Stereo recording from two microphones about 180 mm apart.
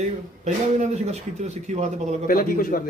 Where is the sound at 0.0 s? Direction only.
40° right (ahead or behind).